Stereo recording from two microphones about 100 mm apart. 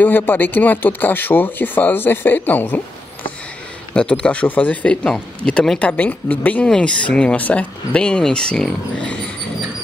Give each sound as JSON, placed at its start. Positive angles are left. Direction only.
{"t": 0.0, "sound": "speech", "side_deg": 20}
{"t": 3.9, "sound": "speech", "side_deg": 10}